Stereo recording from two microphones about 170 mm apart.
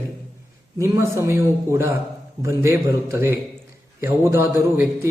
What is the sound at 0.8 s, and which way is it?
A man's voice, 15° right (ahead or behind).